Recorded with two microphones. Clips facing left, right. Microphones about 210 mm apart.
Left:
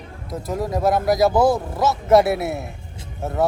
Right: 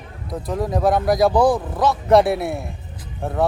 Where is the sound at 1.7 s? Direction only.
Centre (ahead or behind).